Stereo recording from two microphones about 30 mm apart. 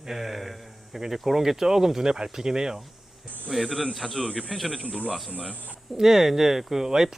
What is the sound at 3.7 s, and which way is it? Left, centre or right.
Speech, centre.